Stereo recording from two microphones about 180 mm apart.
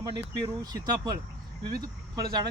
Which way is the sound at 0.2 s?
20° right (ahead or behind).